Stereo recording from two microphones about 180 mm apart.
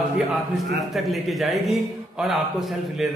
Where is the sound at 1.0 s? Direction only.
Centre (ahead or behind).